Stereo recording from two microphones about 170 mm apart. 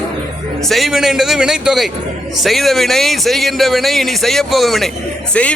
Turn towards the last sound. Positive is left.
turn(degrees=5)  # may be behind; listen again after turning